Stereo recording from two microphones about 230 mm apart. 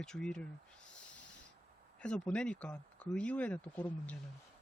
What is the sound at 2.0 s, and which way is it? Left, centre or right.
Speech, centre.